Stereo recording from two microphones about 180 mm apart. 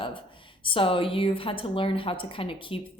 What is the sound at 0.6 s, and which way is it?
A woman's voice, 30° left (ahead or behind).